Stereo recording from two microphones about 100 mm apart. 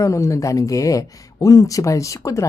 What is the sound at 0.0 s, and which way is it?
Speech, 30° left (ahead or behind).